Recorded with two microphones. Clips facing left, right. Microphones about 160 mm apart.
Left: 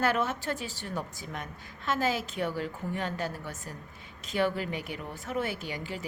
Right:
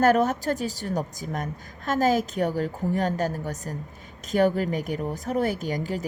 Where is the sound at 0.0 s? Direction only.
40° right (ahead or behind).